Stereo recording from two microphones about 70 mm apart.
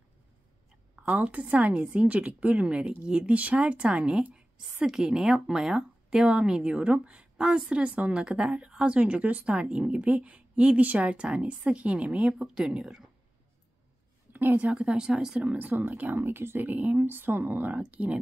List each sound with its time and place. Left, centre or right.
1.0 s speech: centre
14.3 s a woman's voice: right
14.7 s speech: centre